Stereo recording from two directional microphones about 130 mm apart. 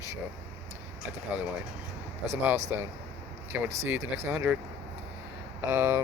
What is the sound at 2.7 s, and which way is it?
Speech, 15° right (ahead or behind).